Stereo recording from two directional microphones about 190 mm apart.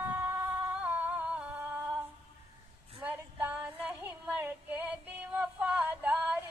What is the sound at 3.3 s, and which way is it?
Female singing, 5° right (ahead or behind).